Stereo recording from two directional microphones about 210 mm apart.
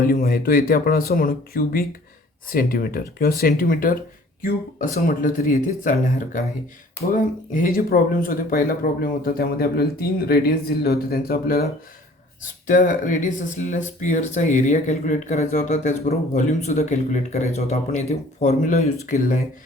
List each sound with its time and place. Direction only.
0.0 s speech: 45° left (ahead or behind)